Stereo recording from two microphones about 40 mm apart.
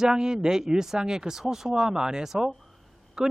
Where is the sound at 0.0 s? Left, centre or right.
Centre.